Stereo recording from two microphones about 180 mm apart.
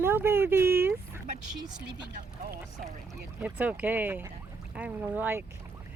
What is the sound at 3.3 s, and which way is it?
Speech, 10° right (ahead or behind).